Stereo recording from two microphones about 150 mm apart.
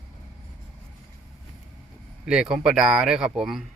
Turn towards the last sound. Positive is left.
turn(degrees=-5)  # may be behind; listen again after turning